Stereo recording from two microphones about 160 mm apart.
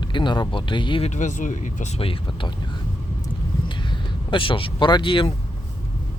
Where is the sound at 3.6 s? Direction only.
30° left (ahead or behind).